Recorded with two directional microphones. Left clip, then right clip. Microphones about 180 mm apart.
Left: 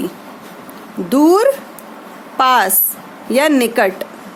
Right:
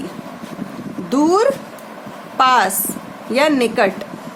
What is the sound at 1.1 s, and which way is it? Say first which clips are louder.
Speech: left 3 dB; 35° left (ahead or behind).